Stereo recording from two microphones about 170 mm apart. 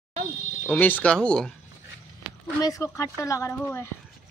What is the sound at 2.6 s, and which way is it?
Speech, 20° left (ahead or behind).